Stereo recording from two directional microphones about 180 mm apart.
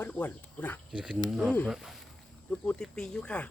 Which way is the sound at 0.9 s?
5° right (ahead or behind).